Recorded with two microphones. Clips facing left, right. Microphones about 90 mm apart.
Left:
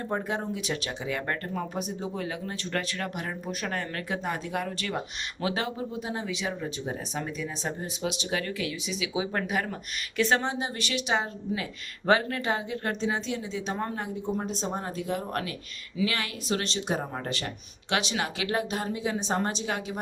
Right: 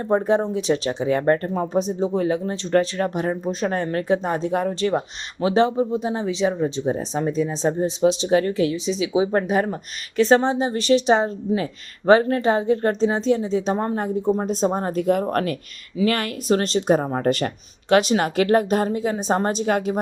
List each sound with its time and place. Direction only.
0.0 s speech: 35° right (ahead or behind); by 20.0 s 50° right (ahead or behind)